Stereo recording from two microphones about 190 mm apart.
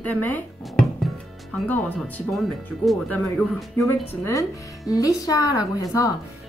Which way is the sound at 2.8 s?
5° left (ahead or behind).